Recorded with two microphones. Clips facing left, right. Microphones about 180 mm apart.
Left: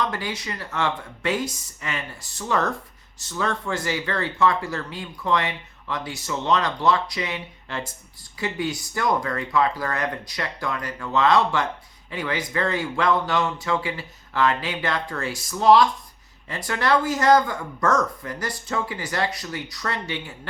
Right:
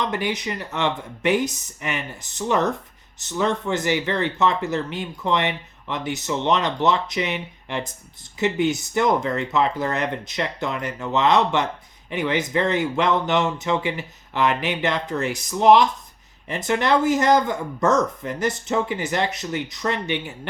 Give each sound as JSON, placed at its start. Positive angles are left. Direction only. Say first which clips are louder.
{"t": 0.0, "sound": "speech", "louder": "right 3 dB", "side_deg": -20}